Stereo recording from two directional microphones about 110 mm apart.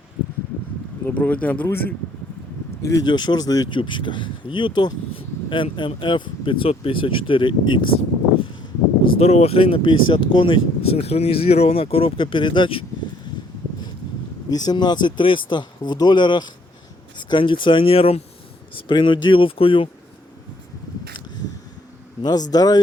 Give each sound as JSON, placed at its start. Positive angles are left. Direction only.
{"t": 1.0, "sound": "speech", "side_deg": 15}
{"t": 3.0, "sound": "speech", "side_deg": 45}
{"t": 3.8, "sound": "speech", "side_deg": 45}
{"t": 9.0, "sound": "speech", "side_deg": 70}
{"t": 14.5, "sound": "speech", "side_deg": 40}
{"t": 18.7, "sound": "speech", "side_deg": 50}
{"t": 22.2, "sound": "speech", "side_deg": 40}